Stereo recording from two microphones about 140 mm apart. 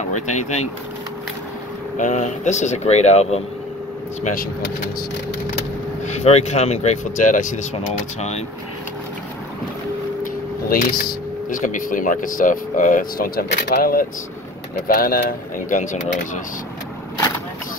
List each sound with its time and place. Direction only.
2.0 s speech: 60° left (ahead or behind)
4.2 s speech: 70° left (ahead or behind)
6.0 s speech: 50° left (ahead or behind)
10.7 s speech: 90° left
11.5 s speech: 70° left (ahead or behind)